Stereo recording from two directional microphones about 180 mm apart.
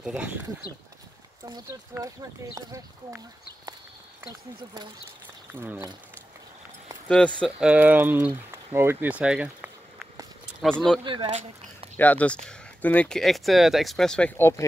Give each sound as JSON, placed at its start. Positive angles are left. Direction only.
{"t": 0.0, "sound": "speech", "side_deg": -5}
{"t": 2.5, "sound": "speech", "side_deg": -20}
{"t": 5.2, "sound": "a sound", "side_deg": -10}
{"t": 7.1, "sound": "speech", "side_deg": 5}
{"t": 7.6, "sound": "speech", "side_deg": -10}
{"t": 11.1, "sound": "speech", "side_deg": -25}
{"t": 12.0, "sound": "speech", "side_deg": 10}